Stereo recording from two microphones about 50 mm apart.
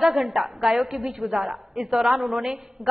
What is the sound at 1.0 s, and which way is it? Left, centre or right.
Speech, right.